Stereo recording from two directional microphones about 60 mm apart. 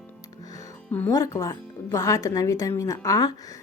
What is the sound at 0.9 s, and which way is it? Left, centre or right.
Speech, left.